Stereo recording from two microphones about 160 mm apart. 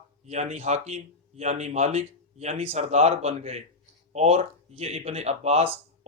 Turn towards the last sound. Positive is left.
turn(degrees=-40)  # may be behind; listen again after turning